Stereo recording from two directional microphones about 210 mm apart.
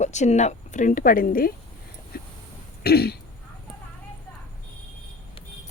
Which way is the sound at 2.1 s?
45° left (ahead or behind).